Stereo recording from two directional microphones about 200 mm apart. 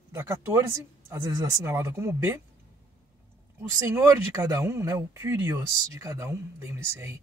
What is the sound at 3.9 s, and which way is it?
Speech, 15° right (ahead or behind).